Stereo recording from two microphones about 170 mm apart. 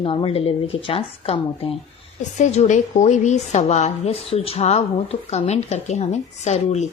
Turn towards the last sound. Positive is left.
turn(degrees=40)  # may be behind; listen again after turning